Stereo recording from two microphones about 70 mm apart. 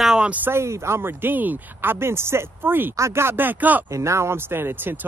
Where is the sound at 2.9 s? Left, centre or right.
Right.